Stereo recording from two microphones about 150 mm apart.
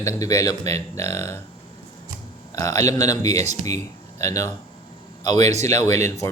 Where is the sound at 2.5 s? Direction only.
20° left (ahead or behind).